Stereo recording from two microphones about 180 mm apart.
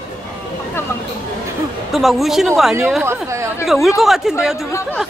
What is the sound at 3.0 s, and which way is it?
Speech, 15° right (ahead or behind).